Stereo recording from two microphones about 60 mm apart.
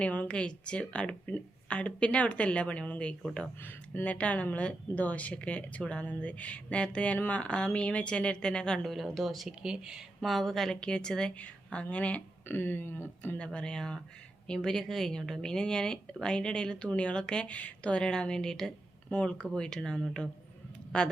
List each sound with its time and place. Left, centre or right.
0.0 s speech: left
9.1 s a woman's voice: centre; by 12.2 s left
12.5 s a woman's voice: left; by 21.1 s centre